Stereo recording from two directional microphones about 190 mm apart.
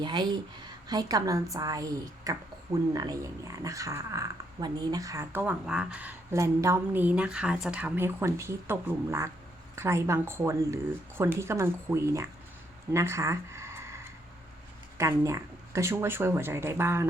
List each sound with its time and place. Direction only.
0.0 s a woman's voice: 25° right (ahead or behind)